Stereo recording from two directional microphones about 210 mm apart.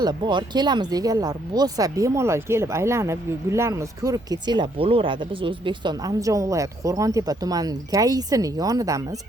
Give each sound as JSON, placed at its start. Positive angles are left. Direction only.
{"t": 0.0, "sound": "speech", "side_deg": -20}